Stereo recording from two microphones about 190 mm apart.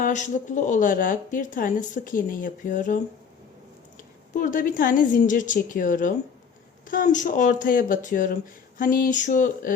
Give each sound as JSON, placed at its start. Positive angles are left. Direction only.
{"t": 0.0, "sound": "speech", "side_deg": 40}
{"t": 4.4, "sound": "speech", "side_deg": 45}